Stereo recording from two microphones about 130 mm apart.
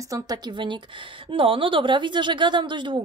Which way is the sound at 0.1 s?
30° right (ahead or behind).